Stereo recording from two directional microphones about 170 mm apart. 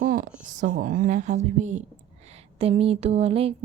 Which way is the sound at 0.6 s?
55° right (ahead or behind).